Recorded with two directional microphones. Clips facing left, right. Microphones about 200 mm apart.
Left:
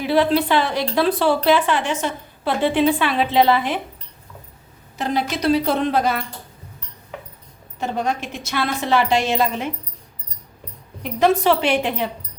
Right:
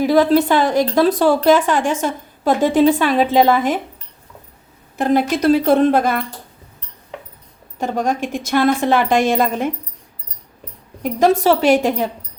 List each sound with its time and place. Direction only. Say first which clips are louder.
0.0 s speech: right 5 dB; 45° right (ahead or behind)
4.9 s speech: right 7 dB; 50° right (ahead or behind)
7.8 s speech: right 4 dB; 45° right (ahead or behind)
11.0 s speech: right 3 dB; 40° right (ahead or behind)